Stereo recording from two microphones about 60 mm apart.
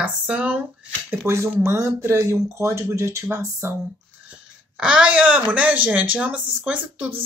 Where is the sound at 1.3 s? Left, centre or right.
Right.